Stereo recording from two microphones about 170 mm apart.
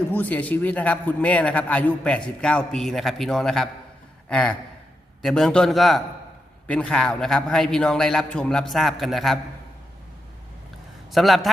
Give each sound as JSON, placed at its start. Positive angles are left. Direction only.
{"t": 0.1, "sound": "a man's voice", "side_deg": 10}
{"t": 11.1, "sound": "a man's voice", "side_deg": 0}